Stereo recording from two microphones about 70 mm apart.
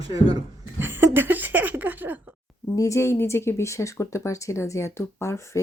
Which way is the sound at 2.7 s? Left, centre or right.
Left.